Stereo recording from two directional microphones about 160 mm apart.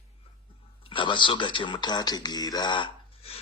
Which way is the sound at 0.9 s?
30° left (ahead or behind).